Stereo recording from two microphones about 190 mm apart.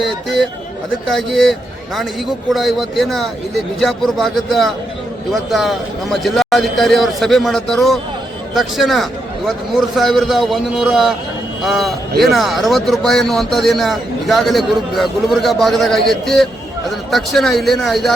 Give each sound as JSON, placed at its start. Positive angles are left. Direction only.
{"t": 1.0, "sound": "speech", "side_deg": 0}